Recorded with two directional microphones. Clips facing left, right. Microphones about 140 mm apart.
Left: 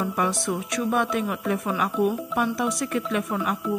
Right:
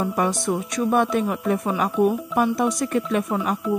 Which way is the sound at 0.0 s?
35° right (ahead or behind).